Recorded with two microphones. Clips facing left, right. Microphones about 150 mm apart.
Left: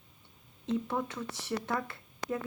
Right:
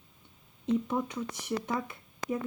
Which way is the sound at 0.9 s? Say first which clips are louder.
Right 2 dB; 15° right (ahead or behind).